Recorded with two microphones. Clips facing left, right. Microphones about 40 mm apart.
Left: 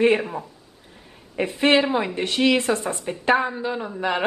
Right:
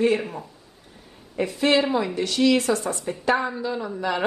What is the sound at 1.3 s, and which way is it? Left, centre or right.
Speech, left.